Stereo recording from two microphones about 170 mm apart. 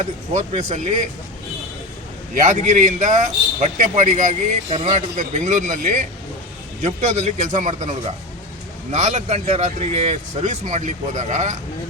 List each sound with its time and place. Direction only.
0.0 s a man's voice: 45° right (ahead or behind)
2.3 s a man's voice: 45° right (ahead or behind)